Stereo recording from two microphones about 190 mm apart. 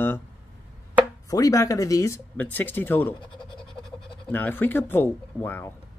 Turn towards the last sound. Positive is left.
turn(degrees=10)  # may be behind; listen again after turning